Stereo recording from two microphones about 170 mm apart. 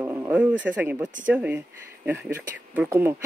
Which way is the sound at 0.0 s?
15° right (ahead or behind).